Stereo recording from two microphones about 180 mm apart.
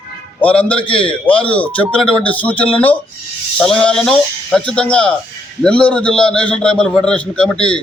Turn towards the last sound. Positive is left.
turn(degrees=5)  # may be behind; listen again after turning